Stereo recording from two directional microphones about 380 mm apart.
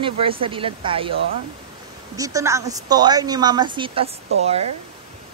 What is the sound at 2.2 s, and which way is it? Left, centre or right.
A woman's voice, centre.